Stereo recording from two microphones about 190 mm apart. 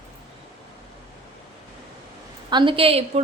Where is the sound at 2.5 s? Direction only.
25° right (ahead or behind).